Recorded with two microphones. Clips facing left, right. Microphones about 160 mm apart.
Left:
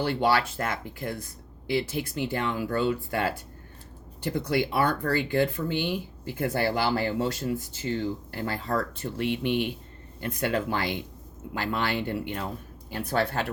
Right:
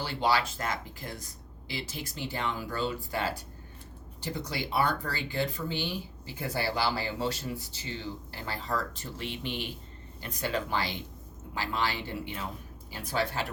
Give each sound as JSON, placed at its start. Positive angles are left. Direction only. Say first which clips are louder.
{"t": 0.0, "sound": "speech", "louder": "left 4 dB", "side_deg": 55}